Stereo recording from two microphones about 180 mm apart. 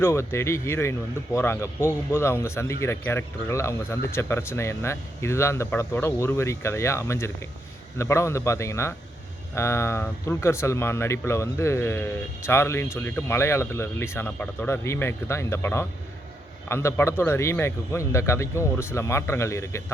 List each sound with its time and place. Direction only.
0.0 s speech: 15° left (ahead or behind)